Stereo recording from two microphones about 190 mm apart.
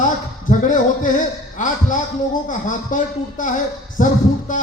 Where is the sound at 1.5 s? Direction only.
40° left (ahead or behind).